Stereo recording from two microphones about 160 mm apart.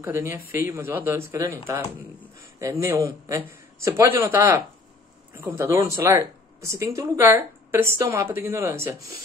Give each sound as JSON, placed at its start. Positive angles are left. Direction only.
{"t": 0.0, "sound": "a man's voice", "side_deg": -15}